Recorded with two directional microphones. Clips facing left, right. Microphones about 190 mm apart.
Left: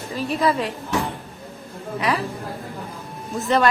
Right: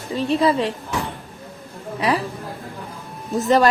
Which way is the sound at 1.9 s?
30° right (ahead or behind).